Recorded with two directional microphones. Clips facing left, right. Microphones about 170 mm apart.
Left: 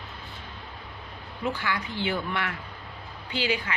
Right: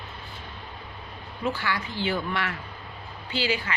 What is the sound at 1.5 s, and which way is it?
Speech, 15° left (ahead or behind).